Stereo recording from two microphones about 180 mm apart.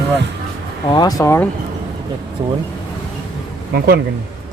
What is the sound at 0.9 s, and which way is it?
Speech, 25° left (ahead or behind).